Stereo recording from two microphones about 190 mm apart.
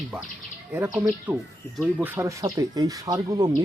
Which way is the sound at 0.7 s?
10° right (ahead or behind).